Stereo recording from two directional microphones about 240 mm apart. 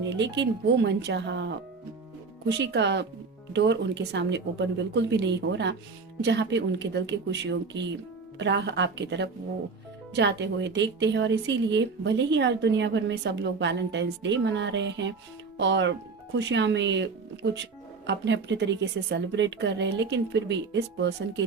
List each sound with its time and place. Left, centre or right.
0.2 s a woman's voice: right